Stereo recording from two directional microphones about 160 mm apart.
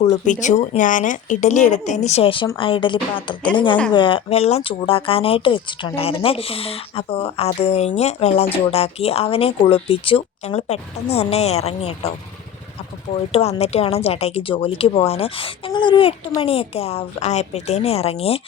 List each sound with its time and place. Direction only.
0.0 s speech: 45° left (ahead or behind)
13.3 s speech: 40° left (ahead or behind)